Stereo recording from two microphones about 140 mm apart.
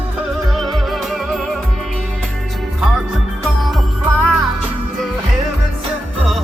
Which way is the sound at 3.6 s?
Centre (ahead or behind).